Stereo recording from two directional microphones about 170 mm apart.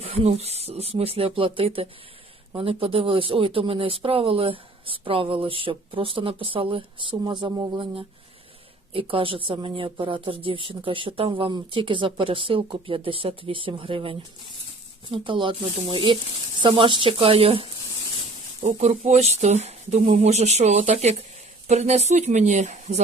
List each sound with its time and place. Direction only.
0.0 s speech: 35° right (ahead or behind)